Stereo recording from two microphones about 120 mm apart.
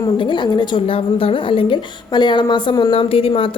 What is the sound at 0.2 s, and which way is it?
A woman's voice, 40° left (ahead or behind).